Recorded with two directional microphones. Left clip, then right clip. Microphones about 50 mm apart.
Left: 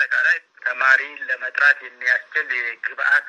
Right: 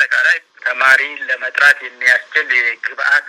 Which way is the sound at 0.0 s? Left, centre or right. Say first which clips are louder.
Right 5 dB; right.